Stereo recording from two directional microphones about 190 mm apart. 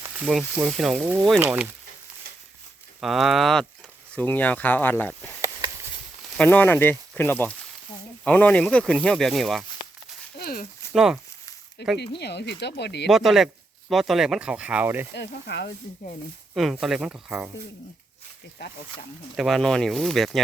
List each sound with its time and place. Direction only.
0.3 s speech: 5° right (ahead or behind)
3.0 s speech: centre (ahead or behind)
5.4 s a sound: 15° right (ahead or behind)
6.3 s speech: 5° left (ahead or behind)
10.3 s a sound: 50° left (ahead or behind)
10.9 s speech: 5° right (ahead or behind)
11.9 s speech: 60° left (ahead or behind)
13.1 s speech: centre (ahead or behind)
15.1 s speech: 65° left (ahead or behind)
16.6 s speech: centre (ahead or behind)
19.4 s speech: centre (ahead or behind)